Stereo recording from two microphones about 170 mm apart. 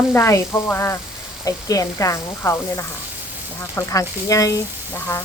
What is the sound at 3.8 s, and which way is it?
Speech, 20° left (ahead or behind).